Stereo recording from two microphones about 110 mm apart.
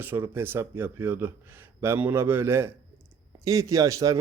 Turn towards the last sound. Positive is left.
turn(degrees=-30)  # may be behind; listen again after turning